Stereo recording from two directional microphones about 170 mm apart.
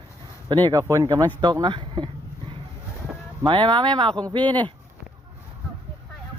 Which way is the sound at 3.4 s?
30° right (ahead or behind).